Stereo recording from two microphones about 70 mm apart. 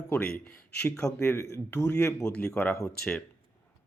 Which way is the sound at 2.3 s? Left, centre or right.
Centre.